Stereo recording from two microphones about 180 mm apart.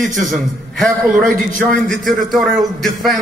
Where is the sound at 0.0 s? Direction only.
45° right (ahead or behind).